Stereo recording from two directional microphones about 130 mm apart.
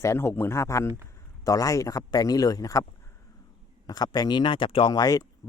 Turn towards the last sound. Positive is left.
turn(degrees=30)  # may be behind; listen again after turning